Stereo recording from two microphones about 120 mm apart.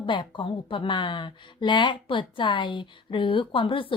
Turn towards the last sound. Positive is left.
turn(degrees=45)  # may be behind; listen again after turning